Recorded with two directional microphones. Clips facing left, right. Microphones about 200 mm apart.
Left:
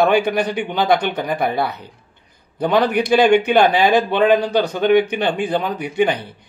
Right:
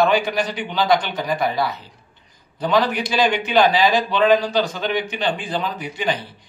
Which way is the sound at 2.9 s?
60° left (ahead or behind).